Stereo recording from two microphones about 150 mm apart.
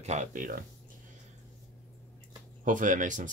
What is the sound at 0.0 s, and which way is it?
Speech, 50° right (ahead or behind).